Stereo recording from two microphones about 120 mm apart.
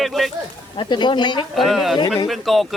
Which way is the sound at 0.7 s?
40° left (ahead or behind).